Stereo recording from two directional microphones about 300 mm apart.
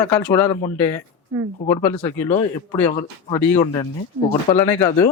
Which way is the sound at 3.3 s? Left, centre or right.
Centre.